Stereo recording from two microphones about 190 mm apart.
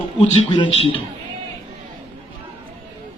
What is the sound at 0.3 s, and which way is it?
Speech, 30° left (ahead or behind).